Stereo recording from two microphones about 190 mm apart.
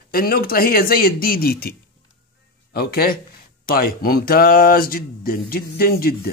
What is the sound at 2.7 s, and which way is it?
Speech, 50° left (ahead or behind).